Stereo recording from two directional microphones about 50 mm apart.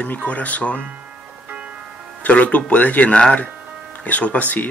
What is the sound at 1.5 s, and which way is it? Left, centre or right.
Music, right.